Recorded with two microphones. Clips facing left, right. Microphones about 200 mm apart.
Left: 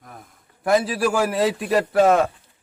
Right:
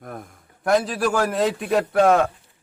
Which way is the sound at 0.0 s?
55° right (ahead or behind).